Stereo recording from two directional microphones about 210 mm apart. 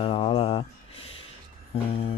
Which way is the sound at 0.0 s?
25° left (ahead or behind).